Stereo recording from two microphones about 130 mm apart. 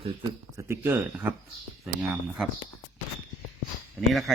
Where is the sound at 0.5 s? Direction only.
20° right (ahead or behind).